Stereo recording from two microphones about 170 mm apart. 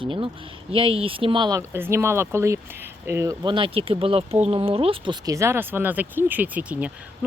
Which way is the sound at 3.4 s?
30° right (ahead or behind).